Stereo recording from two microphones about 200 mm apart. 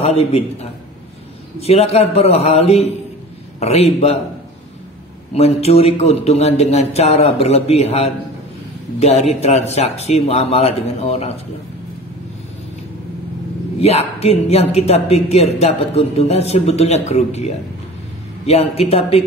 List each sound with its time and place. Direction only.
0.0 s speech: 30° left (ahead or behind)
5.3 s speech: 30° left (ahead or behind)
13.7 s speech: 30° left (ahead or behind)
18.5 s speech: 30° left (ahead or behind)